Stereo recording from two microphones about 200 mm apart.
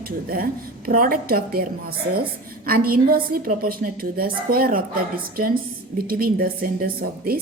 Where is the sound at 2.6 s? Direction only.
50° right (ahead or behind).